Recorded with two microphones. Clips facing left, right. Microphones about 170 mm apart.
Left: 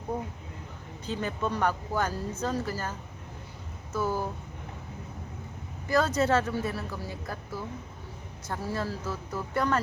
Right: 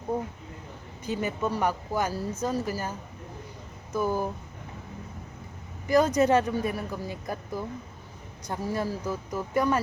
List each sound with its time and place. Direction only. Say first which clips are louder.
1.0 s a woman's voice: right 2 dB; 10° right (ahead or behind)
3.9 s a woman's voice: right 2 dB; 15° right (ahead or behind)
5.9 s a woman's voice: right 4 dB; 15° right (ahead or behind)